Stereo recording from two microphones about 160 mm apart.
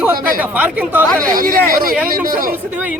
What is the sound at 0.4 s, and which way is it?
Speech, 10° right (ahead or behind).